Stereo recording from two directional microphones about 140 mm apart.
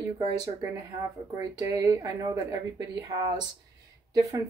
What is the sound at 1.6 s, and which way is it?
Speech, 25° right (ahead or behind).